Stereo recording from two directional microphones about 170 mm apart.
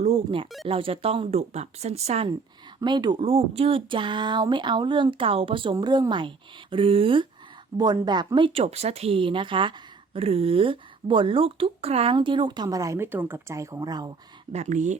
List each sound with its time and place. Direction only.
0.0 s a sound: 30° right (ahead or behind)
0.7 s speech: 30° right (ahead or behind)
2.8 s speech: 25° right (ahead or behind)
14.5 s speech: 45° right (ahead or behind)